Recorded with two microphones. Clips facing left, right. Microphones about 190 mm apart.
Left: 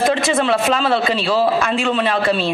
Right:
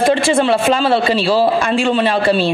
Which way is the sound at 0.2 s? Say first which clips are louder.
Right 3 dB; 30° right (ahead or behind).